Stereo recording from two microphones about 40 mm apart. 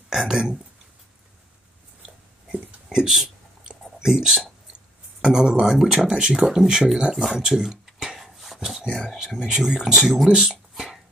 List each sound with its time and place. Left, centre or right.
0.1 s speech: centre
2.9 s speech: centre
5.7 s speech: centre
7.0 s a sound: centre
8.5 s speech: centre
10.2 s speech: centre
10.7 s beatboxing: centre